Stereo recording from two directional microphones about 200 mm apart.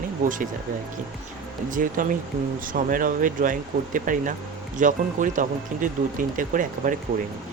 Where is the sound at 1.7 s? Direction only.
40° right (ahead or behind).